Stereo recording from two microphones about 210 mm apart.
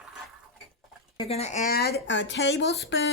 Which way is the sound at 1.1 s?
30° left (ahead or behind).